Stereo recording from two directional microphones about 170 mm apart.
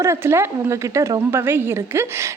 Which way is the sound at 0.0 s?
15° right (ahead or behind).